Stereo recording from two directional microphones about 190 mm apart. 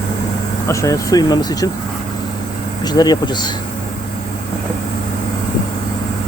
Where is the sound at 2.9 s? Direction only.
20° left (ahead or behind).